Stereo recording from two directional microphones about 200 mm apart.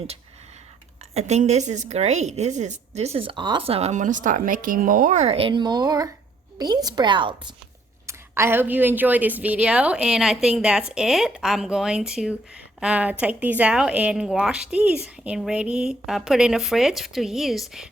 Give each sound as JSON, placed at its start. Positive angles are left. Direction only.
{"t": 1.1, "sound": "a woman's voice", "side_deg": -35}
{"t": 8.0, "sound": "speech", "side_deg": -10}